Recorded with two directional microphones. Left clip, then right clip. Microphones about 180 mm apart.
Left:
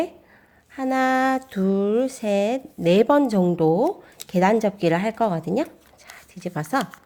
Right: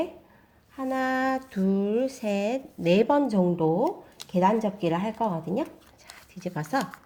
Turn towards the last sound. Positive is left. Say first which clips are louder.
# left 4 dB
turn(degrees=30)  # may be behind; listen again after turning